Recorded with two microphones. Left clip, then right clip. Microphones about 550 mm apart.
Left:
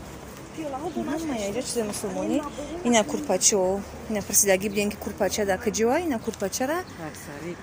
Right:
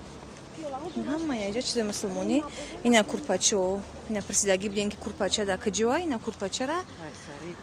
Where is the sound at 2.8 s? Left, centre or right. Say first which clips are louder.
Left 1 dB; right.